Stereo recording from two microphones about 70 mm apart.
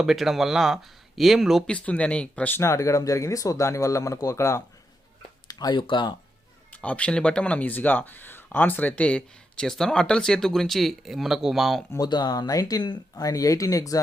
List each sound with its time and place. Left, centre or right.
0.0 s speech: centre
1.6 s speech: centre
2.6 s speech: left
5.5 s speech: left
6.7 s speech: left; by 11.9 s centre
11.9 s speech: left